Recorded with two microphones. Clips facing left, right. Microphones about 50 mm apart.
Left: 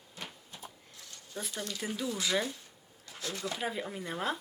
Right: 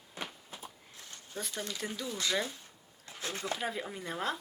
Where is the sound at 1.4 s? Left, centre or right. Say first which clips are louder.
Even; centre.